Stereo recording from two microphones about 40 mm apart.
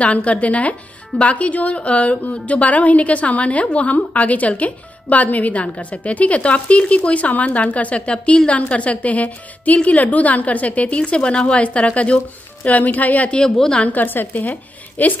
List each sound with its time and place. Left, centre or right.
0.0 s a woman's voice: left
11.0 s speech: left
12.6 s a woman's voice: left